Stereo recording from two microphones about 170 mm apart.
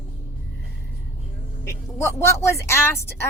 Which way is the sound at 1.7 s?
15° left (ahead or behind).